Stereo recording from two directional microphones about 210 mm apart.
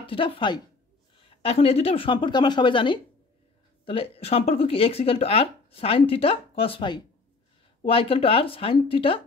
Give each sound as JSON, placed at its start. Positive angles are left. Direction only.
{"t": 0.0, "sound": "speech", "side_deg": 25}